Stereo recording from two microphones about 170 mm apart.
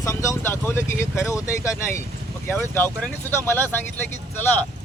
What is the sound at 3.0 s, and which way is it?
Speech, 15° left (ahead or behind).